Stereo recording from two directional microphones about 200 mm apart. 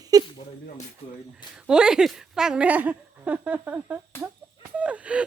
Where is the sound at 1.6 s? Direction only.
5° right (ahead or behind).